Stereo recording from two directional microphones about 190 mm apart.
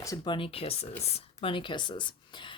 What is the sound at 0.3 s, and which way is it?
A woman's voice, 30° left (ahead or behind).